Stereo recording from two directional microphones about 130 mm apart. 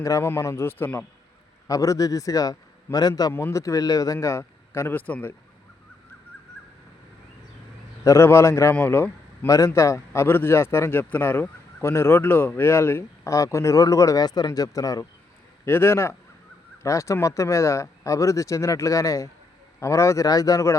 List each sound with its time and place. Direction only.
0.0 s a man's voice: 25° left (ahead or behind)
8.0 s a man's voice: 20° left (ahead or behind)